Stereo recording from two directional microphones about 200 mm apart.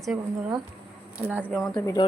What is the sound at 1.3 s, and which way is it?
Speech, 10° right (ahead or behind).